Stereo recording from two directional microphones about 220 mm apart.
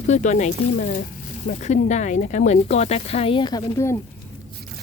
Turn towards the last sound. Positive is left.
turn(degrees=15)  # may be behind; listen again after turning